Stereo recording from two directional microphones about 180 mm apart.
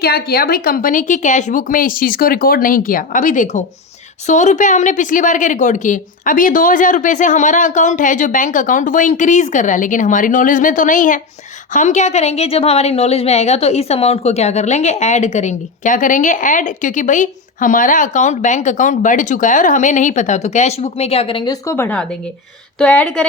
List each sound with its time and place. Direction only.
0.0 s a woman's voice: 60° left (ahead or behind); by 23.2 s 5° left (ahead or behind)